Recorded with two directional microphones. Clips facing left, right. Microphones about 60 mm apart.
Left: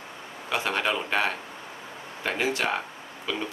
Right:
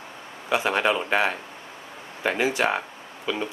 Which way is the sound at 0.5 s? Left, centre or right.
Centre.